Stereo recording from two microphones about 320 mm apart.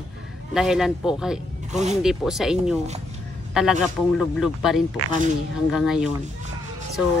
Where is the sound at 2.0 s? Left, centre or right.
Centre.